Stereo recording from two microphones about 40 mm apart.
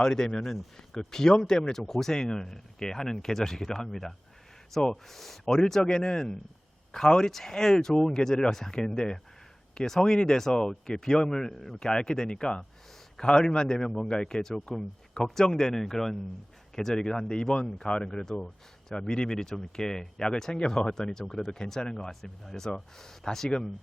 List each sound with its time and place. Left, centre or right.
0.0 s speech: centre
0.3 s speech: centre
0.9 s speech: centre
22.1 s speech: centre